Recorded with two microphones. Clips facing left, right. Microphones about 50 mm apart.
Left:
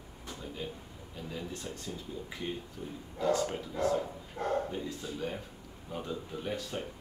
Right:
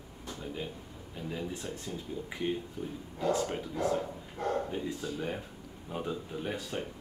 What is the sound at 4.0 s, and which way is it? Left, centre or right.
Dog, centre.